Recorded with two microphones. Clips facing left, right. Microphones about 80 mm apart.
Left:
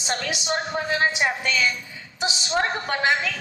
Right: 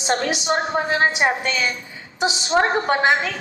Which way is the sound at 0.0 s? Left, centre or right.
Right.